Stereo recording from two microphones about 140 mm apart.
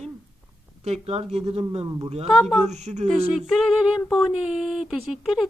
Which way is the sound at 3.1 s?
Centre (ahead or behind).